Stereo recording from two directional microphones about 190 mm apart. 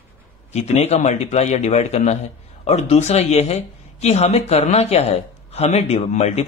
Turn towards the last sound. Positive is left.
turn(degrees=35)  # may be behind; listen again after turning